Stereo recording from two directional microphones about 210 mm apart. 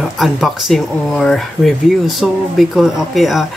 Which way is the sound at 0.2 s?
Centre (ahead or behind).